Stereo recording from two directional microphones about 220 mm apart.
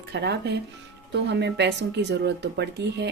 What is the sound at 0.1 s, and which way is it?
Speech, 50° right (ahead or behind).